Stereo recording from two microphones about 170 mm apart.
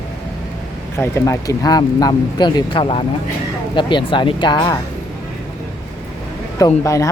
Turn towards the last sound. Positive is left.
turn(degrees=20)  # may be behind; listen again after turning